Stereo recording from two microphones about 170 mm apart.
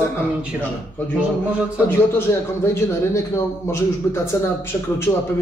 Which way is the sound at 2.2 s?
15° left (ahead or behind).